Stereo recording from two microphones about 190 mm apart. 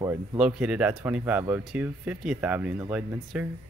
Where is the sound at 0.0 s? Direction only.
20° right (ahead or behind).